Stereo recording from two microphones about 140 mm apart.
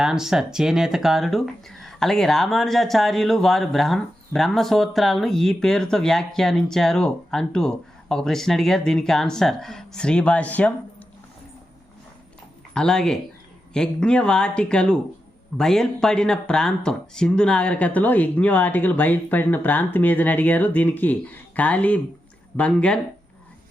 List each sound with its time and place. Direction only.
0.0 s speech: 5° right (ahead or behind)
12.7 s speech: 5° left (ahead or behind)